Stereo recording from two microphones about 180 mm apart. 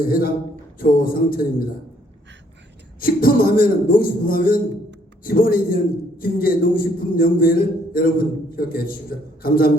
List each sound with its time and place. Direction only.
0.0 s a man's voice: 55° left (ahead or behind)
3.0 s a man's voice: 55° left (ahead or behind)